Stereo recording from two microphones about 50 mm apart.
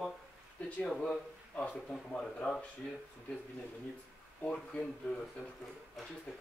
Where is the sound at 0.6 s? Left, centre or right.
Centre.